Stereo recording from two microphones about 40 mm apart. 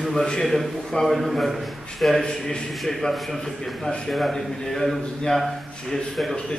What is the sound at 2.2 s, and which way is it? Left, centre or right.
Speech, left.